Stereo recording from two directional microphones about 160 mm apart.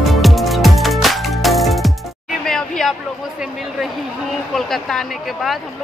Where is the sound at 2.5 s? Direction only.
5° left (ahead or behind).